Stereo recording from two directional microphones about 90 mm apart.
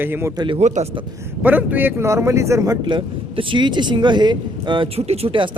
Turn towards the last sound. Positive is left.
turn(degrees=-70)  # may be behind; listen again after turning